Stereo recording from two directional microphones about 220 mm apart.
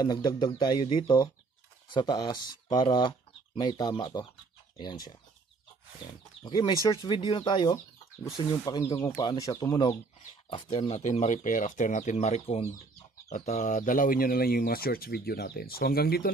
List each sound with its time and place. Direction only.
0.0 s speech: 20° left (ahead or behind)
6.4 s speech: 20° left (ahead or behind); by 16.3 s 45° left (ahead or behind)